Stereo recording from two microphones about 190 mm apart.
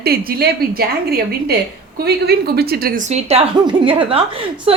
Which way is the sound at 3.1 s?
30° right (ahead or behind).